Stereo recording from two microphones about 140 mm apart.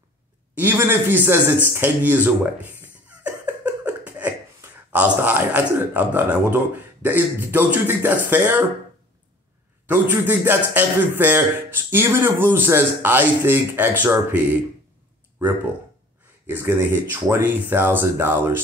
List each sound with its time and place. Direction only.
0.6 s speech: 15° right (ahead or behind)
9.8 s a man's voice: 15° right (ahead or behind)